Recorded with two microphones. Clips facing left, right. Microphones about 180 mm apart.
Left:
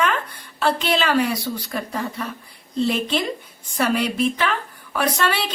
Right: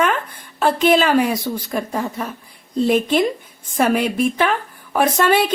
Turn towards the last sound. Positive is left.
turn(degrees=-50)  # may be behind; listen again after turning